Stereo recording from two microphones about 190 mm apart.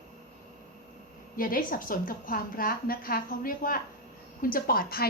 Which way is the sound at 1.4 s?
50° left (ahead or behind).